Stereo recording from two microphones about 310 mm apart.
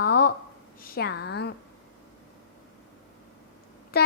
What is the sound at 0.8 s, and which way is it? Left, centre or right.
Speech, left.